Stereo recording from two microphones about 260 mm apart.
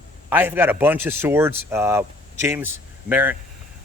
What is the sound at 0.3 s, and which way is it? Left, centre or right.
Speech, centre.